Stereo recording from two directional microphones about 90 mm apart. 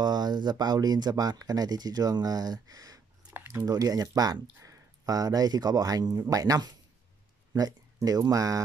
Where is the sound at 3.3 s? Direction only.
30° right (ahead or behind).